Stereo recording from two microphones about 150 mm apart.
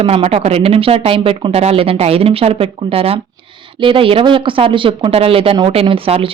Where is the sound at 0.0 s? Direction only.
40° right (ahead or behind).